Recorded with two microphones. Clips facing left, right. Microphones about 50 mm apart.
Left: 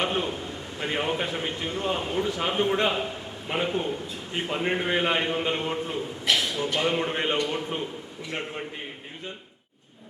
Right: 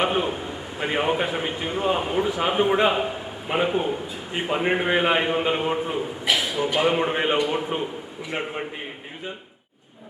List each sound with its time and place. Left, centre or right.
0.0 s a man's voice: centre